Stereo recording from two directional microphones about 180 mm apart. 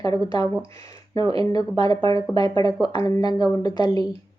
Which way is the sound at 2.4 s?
20° left (ahead or behind).